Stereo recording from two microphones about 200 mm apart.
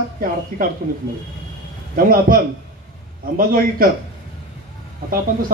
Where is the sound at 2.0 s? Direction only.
45° right (ahead or behind).